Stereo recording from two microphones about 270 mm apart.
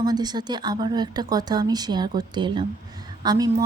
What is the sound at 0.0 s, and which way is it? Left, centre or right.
A woman's voice, centre.